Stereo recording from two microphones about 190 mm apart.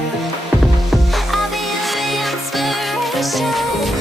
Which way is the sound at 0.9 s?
Centre (ahead or behind).